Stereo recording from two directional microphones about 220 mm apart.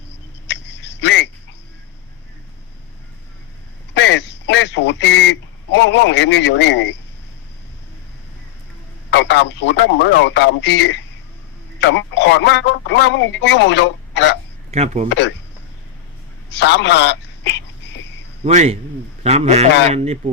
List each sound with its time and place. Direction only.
0.4 s a sound: 50° left (ahead or behind)
3.9 s a man's voice: 55° left (ahead or behind)
9.0 s speech: 50° left (ahead or behind)
14.7 s a man's voice: 30° right (ahead or behind)
16.5 s a man's voice: 55° left (ahead or behind)
18.4 s a man's voice: 30° right (ahead or behind)